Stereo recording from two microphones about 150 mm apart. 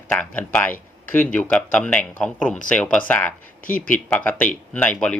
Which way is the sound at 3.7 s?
65° left (ahead or behind).